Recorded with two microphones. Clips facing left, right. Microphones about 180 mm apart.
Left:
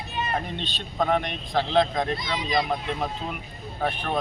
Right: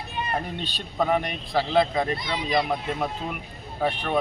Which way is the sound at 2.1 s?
60° right (ahead or behind).